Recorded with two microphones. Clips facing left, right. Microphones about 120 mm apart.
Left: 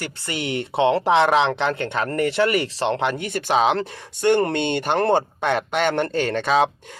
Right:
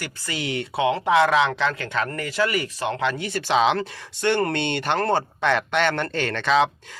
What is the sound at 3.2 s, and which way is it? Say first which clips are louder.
Speech: left 1 dB; 50° left (ahead or behind).